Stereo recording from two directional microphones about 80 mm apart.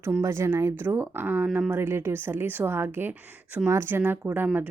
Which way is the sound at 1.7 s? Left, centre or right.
Right.